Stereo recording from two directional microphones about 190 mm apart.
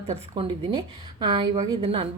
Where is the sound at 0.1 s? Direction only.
30° right (ahead or behind).